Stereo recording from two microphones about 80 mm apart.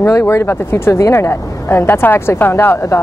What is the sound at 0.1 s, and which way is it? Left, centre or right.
Speech, left.